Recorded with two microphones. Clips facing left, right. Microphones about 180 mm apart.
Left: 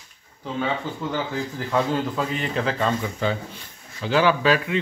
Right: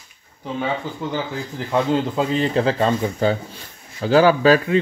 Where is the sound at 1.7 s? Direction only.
20° right (ahead or behind).